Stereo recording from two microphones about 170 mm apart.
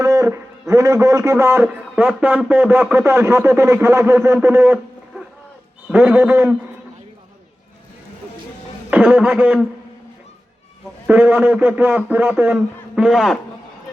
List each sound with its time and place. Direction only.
0.0 s a sound: 20° right (ahead or behind)
0.7 s a man's voice: 20° right (ahead or behind)
5.9 s a man's voice: 10° right (ahead or behind)
8.9 s a man's voice: 5° right (ahead or behind)
11.0 s a man's voice: 10° right (ahead or behind)